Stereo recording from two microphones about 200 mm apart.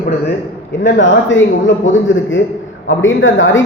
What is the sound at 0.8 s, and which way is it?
A man's voice, 65° left (ahead or behind).